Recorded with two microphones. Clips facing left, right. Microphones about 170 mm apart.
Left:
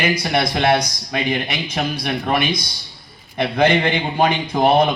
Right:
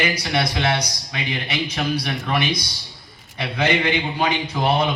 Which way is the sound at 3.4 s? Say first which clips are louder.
Left 5 dB; 55° left (ahead or behind).